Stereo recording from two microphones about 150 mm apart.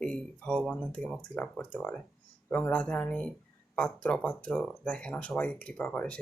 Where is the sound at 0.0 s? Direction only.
5° left (ahead or behind).